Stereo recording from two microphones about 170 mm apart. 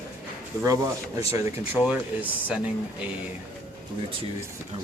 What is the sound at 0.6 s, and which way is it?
Speech, 20° right (ahead or behind).